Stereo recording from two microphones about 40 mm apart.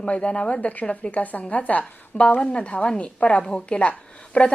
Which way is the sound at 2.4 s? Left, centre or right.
Left.